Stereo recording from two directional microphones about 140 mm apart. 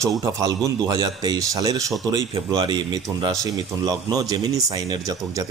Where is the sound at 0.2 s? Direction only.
25° right (ahead or behind).